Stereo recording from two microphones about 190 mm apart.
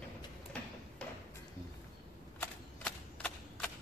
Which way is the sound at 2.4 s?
5° left (ahead or behind).